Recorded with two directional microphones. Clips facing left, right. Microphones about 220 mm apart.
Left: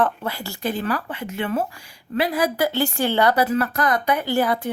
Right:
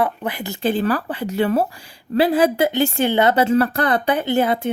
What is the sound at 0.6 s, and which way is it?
Speech, 30° right (ahead or behind).